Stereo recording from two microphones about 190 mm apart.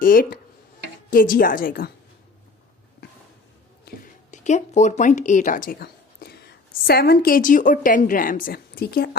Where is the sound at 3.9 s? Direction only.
50° left (ahead or behind).